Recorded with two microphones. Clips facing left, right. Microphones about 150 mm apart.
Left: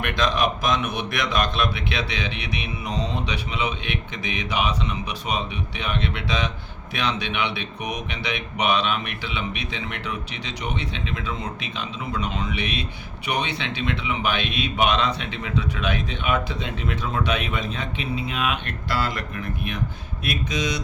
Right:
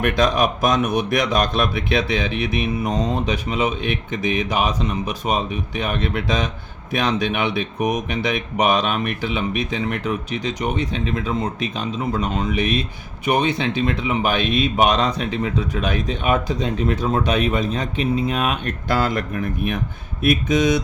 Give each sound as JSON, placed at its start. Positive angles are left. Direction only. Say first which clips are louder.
{"t": 0.0, "sound": "speech", "louder": "right 5 dB", "side_deg": -45}